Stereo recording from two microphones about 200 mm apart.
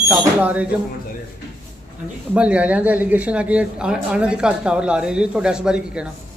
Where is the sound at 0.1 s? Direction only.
5° right (ahead or behind).